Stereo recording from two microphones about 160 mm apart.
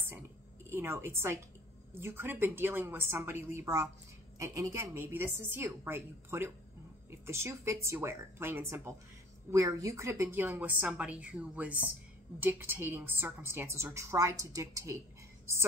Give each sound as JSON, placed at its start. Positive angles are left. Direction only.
{"t": 0.7, "sound": "a woman's voice", "side_deg": -15}